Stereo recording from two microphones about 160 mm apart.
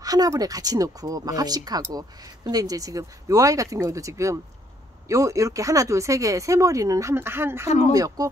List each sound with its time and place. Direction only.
0.0 s speech: 25° right (ahead or behind)
7.6 s speech: 45° left (ahead or behind)
7.9 s speech: 25° right (ahead or behind)